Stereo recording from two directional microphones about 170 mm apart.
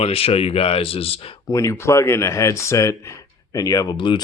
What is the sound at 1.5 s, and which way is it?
Speech, 20° left (ahead or behind).